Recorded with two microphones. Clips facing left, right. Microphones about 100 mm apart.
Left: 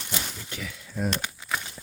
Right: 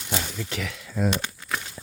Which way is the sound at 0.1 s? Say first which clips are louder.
Right 6 dB; 80° right.